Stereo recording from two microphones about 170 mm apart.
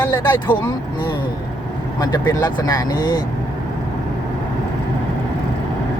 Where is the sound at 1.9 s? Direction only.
25° left (ahead or behind).